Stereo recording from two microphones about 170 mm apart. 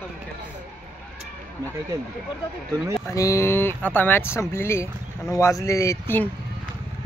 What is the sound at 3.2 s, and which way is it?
Speech, 15° left (ahead or behind).